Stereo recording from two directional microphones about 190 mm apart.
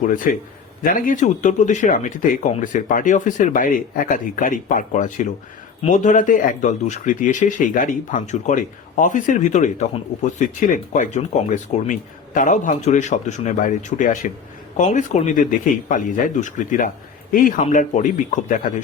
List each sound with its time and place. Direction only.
0.0 s speech: 45° left (ahead or behind)